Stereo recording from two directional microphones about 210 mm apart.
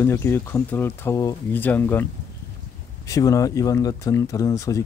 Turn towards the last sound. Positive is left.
turn(degrees=15)  # may be behind; listen again after turning